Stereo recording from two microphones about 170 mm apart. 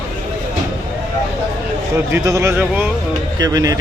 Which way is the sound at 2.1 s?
15° right (ahead or behind).